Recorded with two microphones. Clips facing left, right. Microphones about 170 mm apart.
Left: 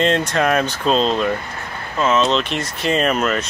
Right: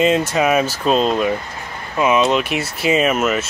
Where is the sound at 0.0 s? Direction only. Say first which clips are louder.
Right 2 dB; 5° right (ahead or behind).